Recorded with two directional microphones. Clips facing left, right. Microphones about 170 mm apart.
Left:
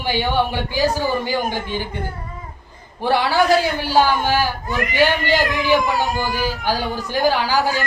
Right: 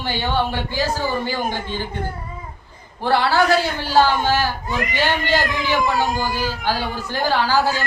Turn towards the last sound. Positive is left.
turn(degrees=15)  # may be behind; listen again after turning